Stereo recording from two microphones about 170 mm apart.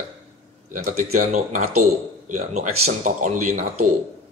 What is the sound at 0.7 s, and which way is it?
Speech, 40° right (ahead or behind).